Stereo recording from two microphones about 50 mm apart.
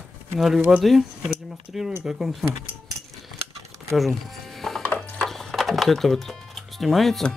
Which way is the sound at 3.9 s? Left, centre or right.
Centre.